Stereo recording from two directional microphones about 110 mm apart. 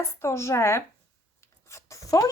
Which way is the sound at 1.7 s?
30° left (ahead or behind).